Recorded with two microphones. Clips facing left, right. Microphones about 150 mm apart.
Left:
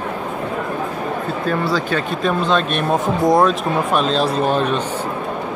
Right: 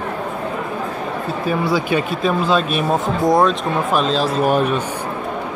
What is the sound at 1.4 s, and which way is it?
Speech, 10° right (ahead or behind).